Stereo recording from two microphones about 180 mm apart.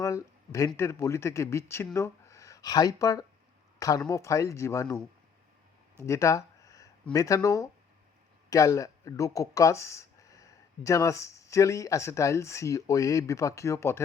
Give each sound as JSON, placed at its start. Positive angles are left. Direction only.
{"t": 0.0, "sound": "speech", "side_deg": 15}
{"t": 6.0, "sound": "a sound", "side_deg": 15}
{"t": 7.1, "sound": "speech", "side_deg": 20}